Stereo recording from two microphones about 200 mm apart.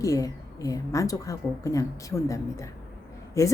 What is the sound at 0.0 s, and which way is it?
Speech, 15° left (ahead or behind).